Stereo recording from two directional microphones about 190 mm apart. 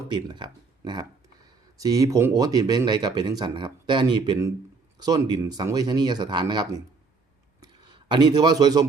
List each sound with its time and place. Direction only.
0.1 s speech: 25° right (ahead or behind)